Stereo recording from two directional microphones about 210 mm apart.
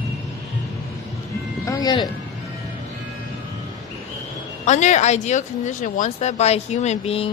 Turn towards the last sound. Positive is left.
turn(degrees=30)  # may be behind; listen again after turning